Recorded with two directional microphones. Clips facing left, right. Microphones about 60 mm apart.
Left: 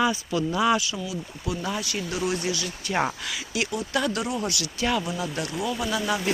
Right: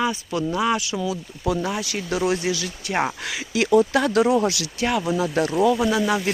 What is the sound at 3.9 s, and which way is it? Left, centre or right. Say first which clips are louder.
Speech: right 7 dB; right.